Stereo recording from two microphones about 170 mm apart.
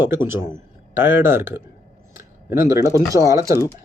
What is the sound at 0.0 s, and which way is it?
Speech, 15° right (ahead or behind).